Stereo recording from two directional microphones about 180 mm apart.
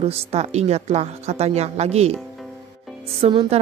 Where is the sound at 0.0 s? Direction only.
35° right (ahead or behind).